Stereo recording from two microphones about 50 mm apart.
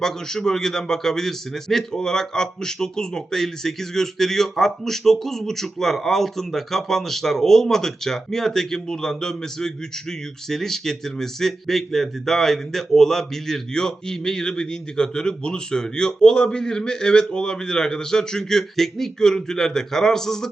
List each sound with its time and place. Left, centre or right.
0.0 s a man's voice: centre